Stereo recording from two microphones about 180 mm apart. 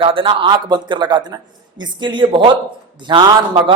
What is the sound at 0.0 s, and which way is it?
Speech, 30° right (ahead or behind).